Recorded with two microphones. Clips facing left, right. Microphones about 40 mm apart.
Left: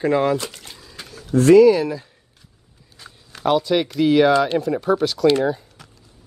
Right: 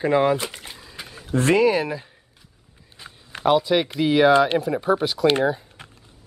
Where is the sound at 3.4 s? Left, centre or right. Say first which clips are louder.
Even; centre.